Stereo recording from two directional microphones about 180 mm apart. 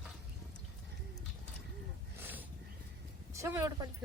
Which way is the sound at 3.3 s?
15° right (ahead or behind).